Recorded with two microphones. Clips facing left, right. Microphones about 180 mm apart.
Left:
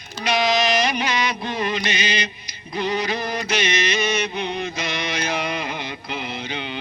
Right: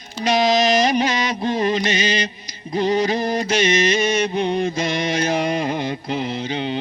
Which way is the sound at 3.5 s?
45° right (ahead or behind).